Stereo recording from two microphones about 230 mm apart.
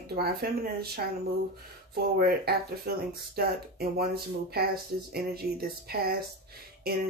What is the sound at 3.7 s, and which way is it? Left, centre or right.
Speech, right.